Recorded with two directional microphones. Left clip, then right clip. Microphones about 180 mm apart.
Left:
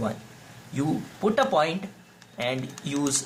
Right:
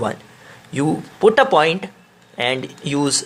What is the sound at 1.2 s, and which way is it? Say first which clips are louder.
Speech: right 10 dB; 30° right (ahead or behind).